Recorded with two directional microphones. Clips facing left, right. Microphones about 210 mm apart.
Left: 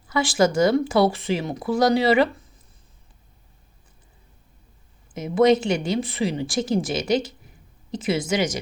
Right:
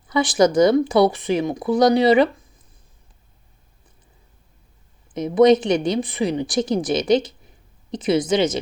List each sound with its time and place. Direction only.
0.1 s speech: 20° right (ahead or behind)
5.1 s speech: 20° right (ahead or behind)